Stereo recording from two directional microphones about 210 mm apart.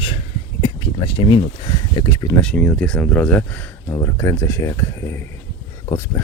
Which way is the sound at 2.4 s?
5° left (ahead or behind).